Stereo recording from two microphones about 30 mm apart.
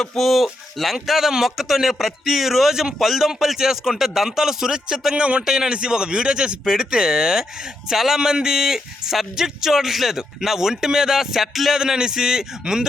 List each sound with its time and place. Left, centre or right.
0.2 s speech: centre
5.1 s speech: right
5.5 s a man's voice: right
11.8 s a man's voice: right